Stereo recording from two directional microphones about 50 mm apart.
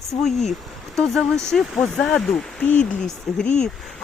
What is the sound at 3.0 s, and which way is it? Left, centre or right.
Speech, centre.